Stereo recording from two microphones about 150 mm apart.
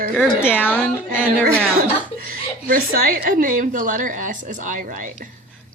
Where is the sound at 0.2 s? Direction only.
5° right (ahead or behind).